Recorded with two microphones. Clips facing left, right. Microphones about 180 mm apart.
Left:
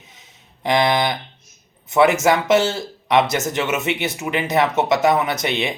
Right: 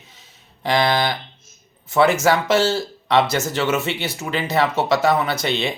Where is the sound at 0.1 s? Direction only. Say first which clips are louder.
Left 1 dB; 20° left (ahead or behind).